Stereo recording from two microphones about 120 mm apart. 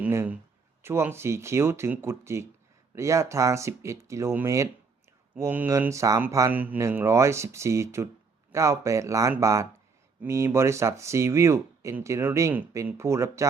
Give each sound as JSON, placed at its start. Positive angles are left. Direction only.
{"t": 0.0, "sound": "speech", "side_deg": -15}
{"t": 6.5, "sound": "speech", "side_deg": -15}